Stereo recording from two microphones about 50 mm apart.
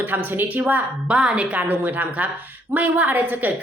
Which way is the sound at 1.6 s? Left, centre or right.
Right.